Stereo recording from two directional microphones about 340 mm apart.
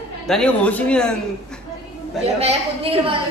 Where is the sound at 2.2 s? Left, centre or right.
Centre.